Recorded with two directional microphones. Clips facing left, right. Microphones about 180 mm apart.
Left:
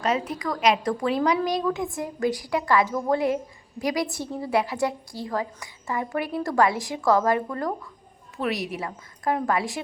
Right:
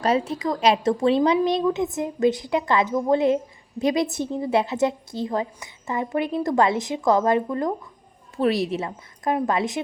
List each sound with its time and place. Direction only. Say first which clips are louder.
0.0 s a woman's voice: right 4 dB; 30° right (ahead or behind)